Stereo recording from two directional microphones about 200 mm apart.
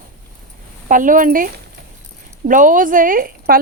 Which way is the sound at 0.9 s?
40° right (ahead or behind).